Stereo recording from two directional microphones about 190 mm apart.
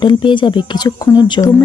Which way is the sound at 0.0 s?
25° left (ahead or behind).